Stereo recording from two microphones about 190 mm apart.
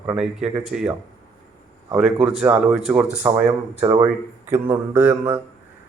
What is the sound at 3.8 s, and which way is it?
Speech, 25° right (ahead or behind).